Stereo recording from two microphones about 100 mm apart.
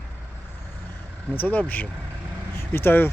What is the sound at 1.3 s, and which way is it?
Speech, 15° left (ahead or behind).